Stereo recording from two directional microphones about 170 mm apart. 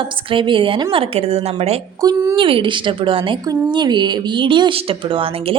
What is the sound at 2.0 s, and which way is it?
A woman's voice, 20° right (ahead or behind).